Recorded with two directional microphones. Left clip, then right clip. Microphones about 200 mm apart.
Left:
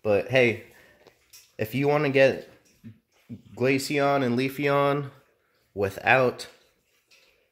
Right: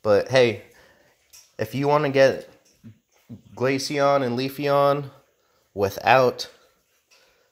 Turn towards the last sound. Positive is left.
turn(degrees=-5)  # may be behind; listen again after turning